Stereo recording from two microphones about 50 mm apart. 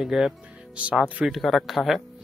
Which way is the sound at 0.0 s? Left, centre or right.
Centre.